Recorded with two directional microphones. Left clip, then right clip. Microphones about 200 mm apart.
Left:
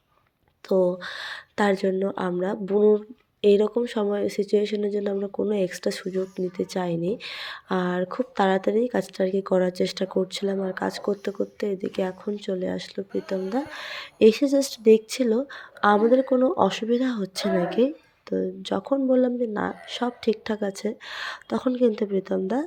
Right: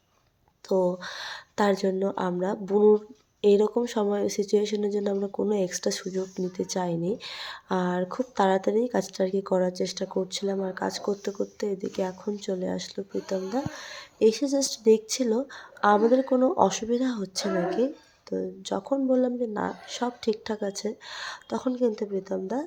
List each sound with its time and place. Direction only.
0.7 s speech: 5° left (ahead or behind)